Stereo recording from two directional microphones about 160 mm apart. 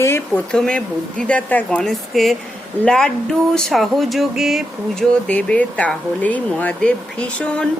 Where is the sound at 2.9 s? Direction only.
5° left (ahead or behind).